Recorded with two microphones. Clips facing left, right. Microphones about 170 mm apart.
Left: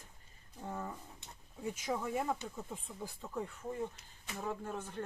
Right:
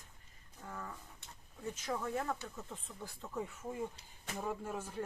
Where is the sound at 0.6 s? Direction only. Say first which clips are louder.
Left 5 dB; 25° left (ahead or behind).